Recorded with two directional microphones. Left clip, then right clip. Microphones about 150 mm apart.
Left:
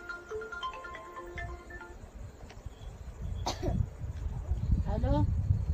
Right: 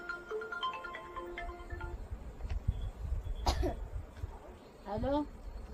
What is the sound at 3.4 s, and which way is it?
Cough, 10° left (ahead or behind).